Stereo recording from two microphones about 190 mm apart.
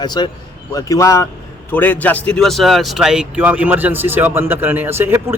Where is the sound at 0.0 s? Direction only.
20° left (ahead or behind).